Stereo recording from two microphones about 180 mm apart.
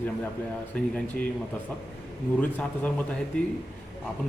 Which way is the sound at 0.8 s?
5° left (ahead or behind).